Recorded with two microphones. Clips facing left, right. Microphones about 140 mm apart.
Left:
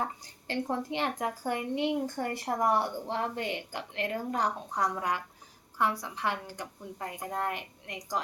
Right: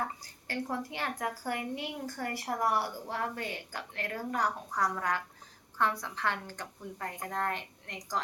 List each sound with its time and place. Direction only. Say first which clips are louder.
0.0 s a woman's voice: left 2 dB; 20° left (ahead or behind)